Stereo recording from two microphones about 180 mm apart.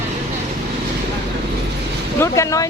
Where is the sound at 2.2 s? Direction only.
15° left (ahead or behind).